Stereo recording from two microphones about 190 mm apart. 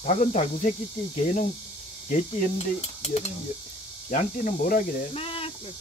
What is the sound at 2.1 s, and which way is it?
Cutlery, 40° left (ahead or behind).